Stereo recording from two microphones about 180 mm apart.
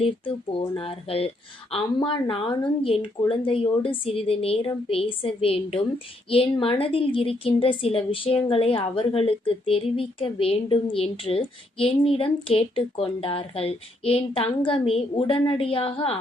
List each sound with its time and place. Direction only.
0.8 s a woman's voice: 30° left (ahead or behind)